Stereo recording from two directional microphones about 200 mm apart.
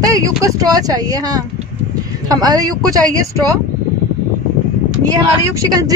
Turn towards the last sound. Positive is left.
turn(degrees=-20)  # may be behind; listen again after turning